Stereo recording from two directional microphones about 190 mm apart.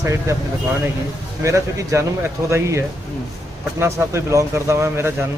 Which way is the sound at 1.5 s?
15° right (ahead or behind).